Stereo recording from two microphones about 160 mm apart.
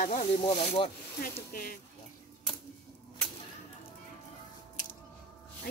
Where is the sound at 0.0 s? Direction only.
45° left (ahead or behind).